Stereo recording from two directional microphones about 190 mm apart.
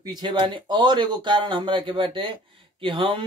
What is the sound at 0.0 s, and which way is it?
Speech, 25° right (ahead or behind).